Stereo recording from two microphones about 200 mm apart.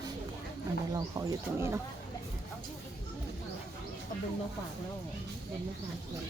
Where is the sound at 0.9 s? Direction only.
15° right (ahead or behind).